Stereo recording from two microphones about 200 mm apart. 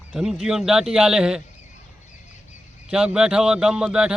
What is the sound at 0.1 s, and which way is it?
Speech, centre (ahead or behind).